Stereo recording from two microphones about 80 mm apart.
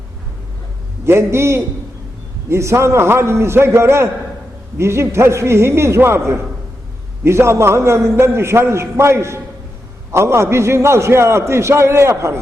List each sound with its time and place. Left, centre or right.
1.0 s a man's voice: right